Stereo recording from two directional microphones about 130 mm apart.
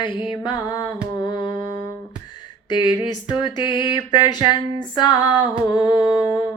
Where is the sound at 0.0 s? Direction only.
35° left (ahead or behind).